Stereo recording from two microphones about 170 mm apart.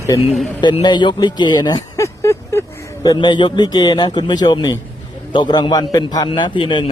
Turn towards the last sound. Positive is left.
turn(degrees=30)  # may be behind; listen again after turning